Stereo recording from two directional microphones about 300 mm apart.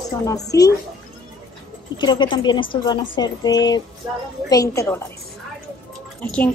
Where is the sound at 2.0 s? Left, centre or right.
Centre.